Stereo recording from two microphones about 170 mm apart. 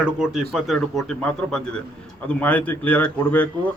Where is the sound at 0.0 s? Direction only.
5° right (ahead or behind).